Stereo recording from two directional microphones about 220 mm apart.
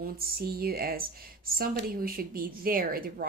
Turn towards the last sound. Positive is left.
turn(degrees=-40)  # may be behind; listen again after turning